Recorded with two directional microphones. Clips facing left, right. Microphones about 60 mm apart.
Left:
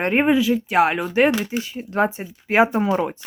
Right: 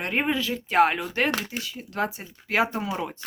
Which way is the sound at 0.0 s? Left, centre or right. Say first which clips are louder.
Left 7 dB; left.